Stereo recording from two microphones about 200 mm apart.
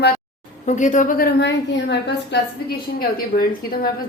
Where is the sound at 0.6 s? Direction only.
35° left (ahead or behind).